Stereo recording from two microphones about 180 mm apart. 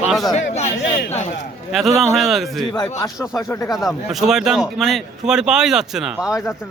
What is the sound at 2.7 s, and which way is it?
Speech, 20° left (ahead or behind).